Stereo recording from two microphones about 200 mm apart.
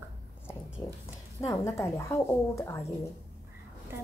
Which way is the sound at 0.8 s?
20° left (ahead or behind).